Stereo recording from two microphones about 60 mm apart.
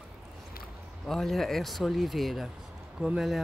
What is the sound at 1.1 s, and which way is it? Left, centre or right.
Speech, centre.